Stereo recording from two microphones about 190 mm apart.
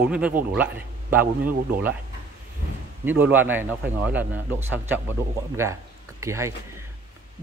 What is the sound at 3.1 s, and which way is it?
A man's voice, 10° right (ahead or behind).